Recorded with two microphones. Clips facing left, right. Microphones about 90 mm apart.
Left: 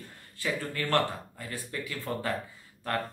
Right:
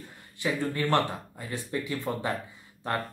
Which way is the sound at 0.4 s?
20° right (ahead or behind).